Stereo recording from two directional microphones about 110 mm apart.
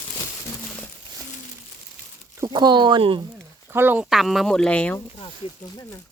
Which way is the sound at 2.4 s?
40° right (ahead or behind).